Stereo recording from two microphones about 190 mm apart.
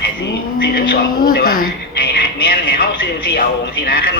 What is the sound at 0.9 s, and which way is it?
Speech, 50° left (ahead or behind).